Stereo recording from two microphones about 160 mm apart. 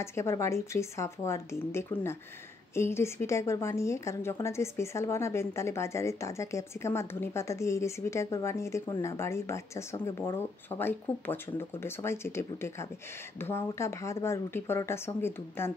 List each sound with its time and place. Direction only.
0.0 s a woman's voice: 15° left (ahead or behind)